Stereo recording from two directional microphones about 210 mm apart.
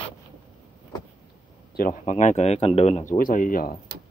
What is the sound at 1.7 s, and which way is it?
Speech, 40° left (ahead or behind).